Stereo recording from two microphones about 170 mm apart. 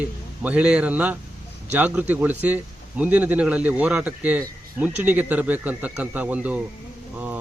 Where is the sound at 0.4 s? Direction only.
5° right (ahead or behind).